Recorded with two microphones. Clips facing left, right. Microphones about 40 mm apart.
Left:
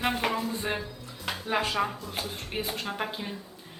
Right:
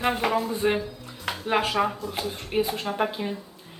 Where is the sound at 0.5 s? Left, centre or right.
Right.